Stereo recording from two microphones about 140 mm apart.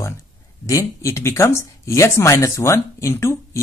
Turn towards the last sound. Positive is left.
turn(degrees=20)  # may be behind; listen again after turning